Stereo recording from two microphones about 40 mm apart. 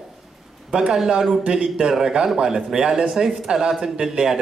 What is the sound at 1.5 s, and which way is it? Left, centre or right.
Speech, right.